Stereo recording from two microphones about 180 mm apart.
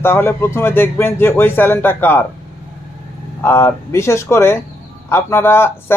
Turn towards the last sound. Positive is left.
turn(degrees=10)  # may be behind; listen again after turning